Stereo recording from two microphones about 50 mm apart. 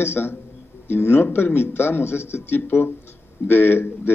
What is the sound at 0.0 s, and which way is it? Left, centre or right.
A man's voice, left.